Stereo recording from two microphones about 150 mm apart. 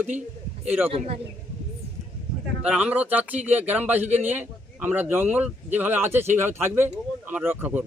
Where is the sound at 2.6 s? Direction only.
10° right (ahead or behind).